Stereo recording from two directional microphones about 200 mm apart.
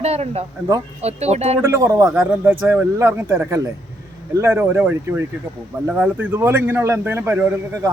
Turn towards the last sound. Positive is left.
turn(degrees=-15)  # may be behind; listen again after turning